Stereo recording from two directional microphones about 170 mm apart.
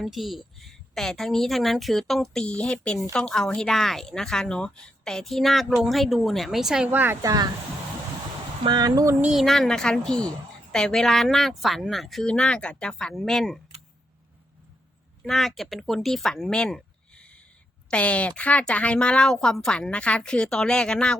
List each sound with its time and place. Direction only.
0.0 s speech: centre (ahead or behind); by 7.4 s 20° right (ahead or behind)
8.6 s a sound: 25° right (ahead or behind)
9.2 s speech: centre (ahead or behind)
15.2 s speech: centre (ahead or behind)